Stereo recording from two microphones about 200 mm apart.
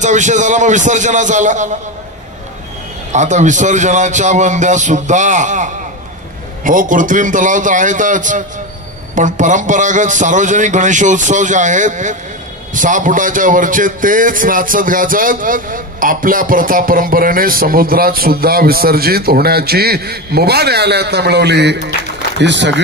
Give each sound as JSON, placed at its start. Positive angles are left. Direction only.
{"t": 0.0, "sound": "a man's voice", "side_deg": -35}
{"t": 3.1, "sound": "a man's voice", "side_deg": -35}